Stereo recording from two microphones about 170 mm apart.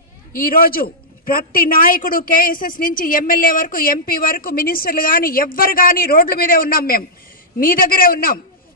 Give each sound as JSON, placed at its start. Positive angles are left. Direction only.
{"t": 0.3, "sound": "a woman's voice", "side_deg": 60}